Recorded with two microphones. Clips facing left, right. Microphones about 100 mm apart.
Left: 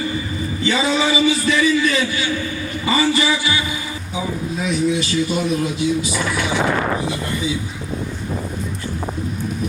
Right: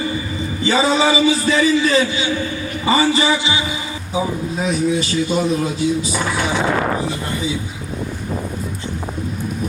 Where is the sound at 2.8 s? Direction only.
35° right (ahead or behind).